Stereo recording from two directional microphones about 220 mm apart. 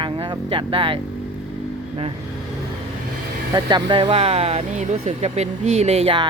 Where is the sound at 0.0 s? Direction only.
25° right (ahead or behind).